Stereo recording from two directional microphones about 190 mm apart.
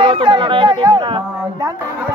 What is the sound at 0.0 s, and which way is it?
Speech, 25° right (ahead or behind).